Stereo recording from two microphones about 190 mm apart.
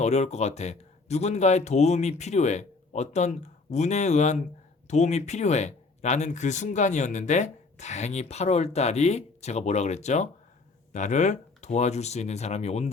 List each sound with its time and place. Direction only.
0.0 s speech: 35° left (ahead or behind)